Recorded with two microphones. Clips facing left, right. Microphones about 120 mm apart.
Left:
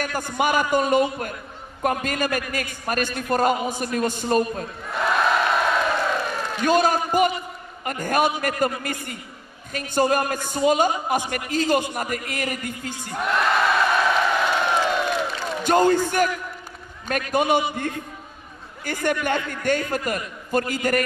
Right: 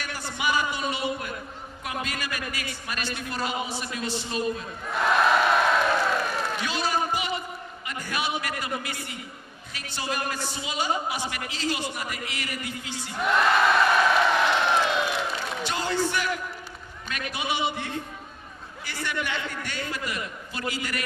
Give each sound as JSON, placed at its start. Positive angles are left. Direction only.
{"t": 0.0, "sound": "a man's voice", "side_deg": 50}
{"t": 4.8, "sound": "crowd", "side_deg": 0}
{"t": 6.6, "sound": "a man's voice", "side_deg": 50}
{"t": 13.2, "sound": "crowd", "side_deg": 0}
{"t": 15.6, "sound": "a man's voice", "side_deg": 50}